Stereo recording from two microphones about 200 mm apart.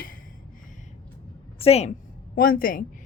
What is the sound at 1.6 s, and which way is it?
Speech, 30° left (ahead or behind).